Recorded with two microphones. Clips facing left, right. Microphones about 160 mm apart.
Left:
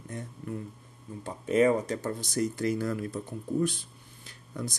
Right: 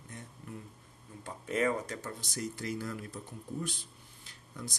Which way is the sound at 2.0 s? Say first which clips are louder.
Left 9 dB; 45° left (ahead or behind).